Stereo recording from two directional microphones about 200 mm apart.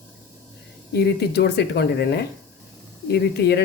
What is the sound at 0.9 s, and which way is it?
Speech, 55° left (ahead or behind).